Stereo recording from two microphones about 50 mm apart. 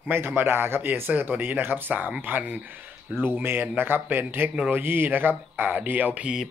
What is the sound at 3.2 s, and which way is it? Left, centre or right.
A man's voice, right.